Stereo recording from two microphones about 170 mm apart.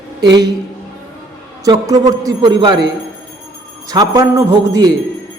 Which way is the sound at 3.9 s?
20° right (ahead or behind).